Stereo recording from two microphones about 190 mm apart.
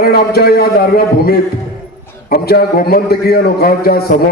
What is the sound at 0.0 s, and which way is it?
A man's voice, 55° left (ahead or behind).